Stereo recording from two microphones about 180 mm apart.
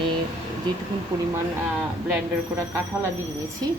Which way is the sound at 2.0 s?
10° right (ahead or behind).